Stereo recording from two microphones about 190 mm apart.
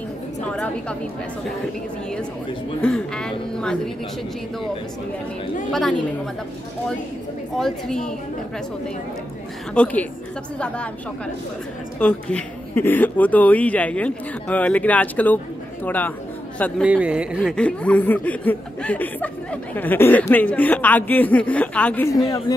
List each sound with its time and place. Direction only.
0.5 s a woman's voice: 5° left (ahead or behind)
2.8 s a woman's voice: 5° left (ahead or behind)
5.7 s a woman's voice: centre (ahead or behind)
7.5 s a woman's voice: centre (ahead or behind)
9.8 s speech: 10° left (ahead or behind)
12.0 s speech: 5° left (ahead or behind)
16.8 s speech: 5° right (ahead or behind)
17.4 s speech: 5° left (ahead or behind)